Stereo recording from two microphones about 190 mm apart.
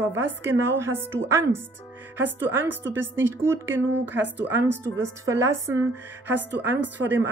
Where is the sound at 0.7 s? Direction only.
15° right (ahead or behind).